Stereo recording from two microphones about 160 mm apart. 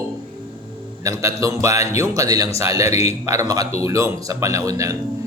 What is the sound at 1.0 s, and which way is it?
Speech, 20° right (ahead or behind).